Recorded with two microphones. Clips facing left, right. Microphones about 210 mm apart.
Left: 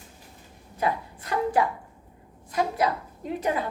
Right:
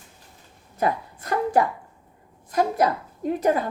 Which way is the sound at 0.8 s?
45° right (ahead or behind).